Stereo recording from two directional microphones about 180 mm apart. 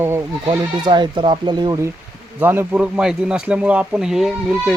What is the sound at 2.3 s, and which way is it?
Speech, 10° right (ahead or behind).